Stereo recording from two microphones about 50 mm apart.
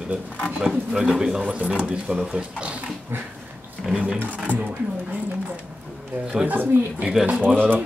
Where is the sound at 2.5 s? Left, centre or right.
Right.